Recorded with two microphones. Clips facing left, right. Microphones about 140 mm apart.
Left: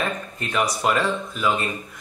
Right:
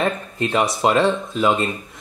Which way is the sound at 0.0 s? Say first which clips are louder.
Right 6 dB; 30° right (ahead or behind).